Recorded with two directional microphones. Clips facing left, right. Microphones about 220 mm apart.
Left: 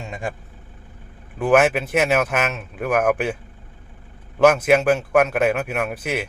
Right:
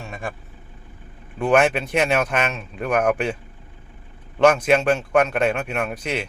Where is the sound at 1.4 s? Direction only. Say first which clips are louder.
Left 1 dB; 5° left (ahead or behind).